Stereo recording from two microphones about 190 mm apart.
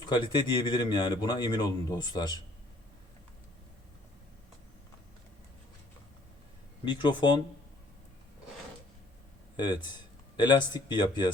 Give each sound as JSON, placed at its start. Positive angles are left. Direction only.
{"t": 0.0, "sound": "speech", "side_deg": 25}
{"t": 6.8, "sound": "speech", "side_deg": 25}
{"t": 9.6, "sound": "speech", "side_deg": 25}